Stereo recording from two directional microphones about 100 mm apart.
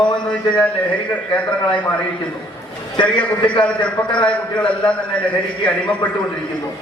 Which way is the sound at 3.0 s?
10° left (ahead or behind).